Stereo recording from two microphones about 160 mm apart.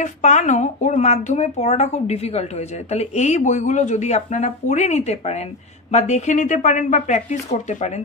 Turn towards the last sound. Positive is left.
turn(degrees=45)  # may be behind; listen again after turning